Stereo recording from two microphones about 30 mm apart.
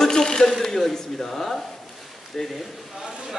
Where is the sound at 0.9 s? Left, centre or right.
Centre.